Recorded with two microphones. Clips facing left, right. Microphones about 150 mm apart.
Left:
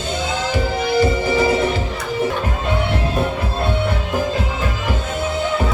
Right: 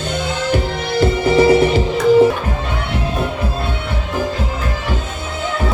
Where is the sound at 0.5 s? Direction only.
65° right (ahead or behind).